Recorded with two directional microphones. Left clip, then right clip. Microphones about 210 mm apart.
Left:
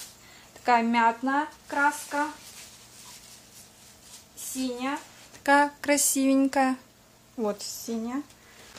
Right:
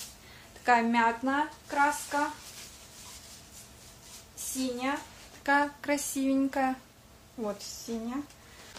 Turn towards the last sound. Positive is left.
turn(degrees=45)  # may be behind; listen again after turning